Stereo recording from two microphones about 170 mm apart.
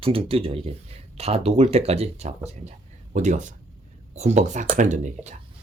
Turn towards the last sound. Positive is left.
turn(degrees=-45)  # may be behind; listen again after turning